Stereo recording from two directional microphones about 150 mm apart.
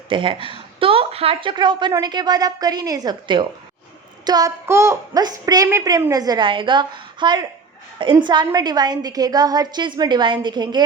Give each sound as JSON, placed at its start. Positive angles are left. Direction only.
{"t": 0.1, "sound": "a woman's voice", "side_deg": -35}